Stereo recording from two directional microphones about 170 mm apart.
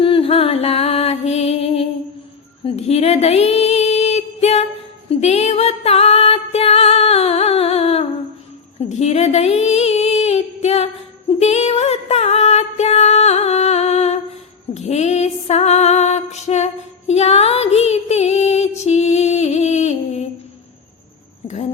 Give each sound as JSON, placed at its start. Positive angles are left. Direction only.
{"t": 0.0, "sound": "music", "side_deg": 35}
{"t": 2.6, "sound": "female singing", "side_deg": 40}
{"t": 5.0, "sound": "music", "side_deg": 40}
{"t": 8.9, "sound": "female singing", "side_deg": 40}
{"t": 11.3, "sound": "music", "side_deg": 40}
{"t": 21.4, "sound": "a sound", "side_deg": 45}